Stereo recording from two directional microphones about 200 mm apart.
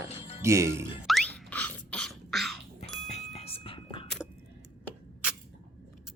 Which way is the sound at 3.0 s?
35° left (ahead or behind).